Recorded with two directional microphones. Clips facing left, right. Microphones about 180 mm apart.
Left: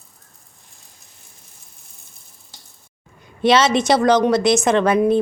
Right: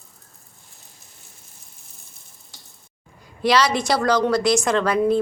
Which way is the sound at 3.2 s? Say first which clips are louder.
Left 3 dB; 25° left (ahead or behind).